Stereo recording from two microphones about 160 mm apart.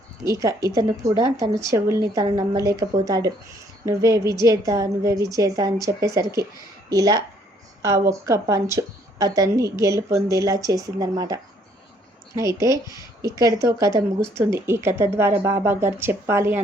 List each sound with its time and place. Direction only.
0.3 s speech: 20° right (ahead or behind)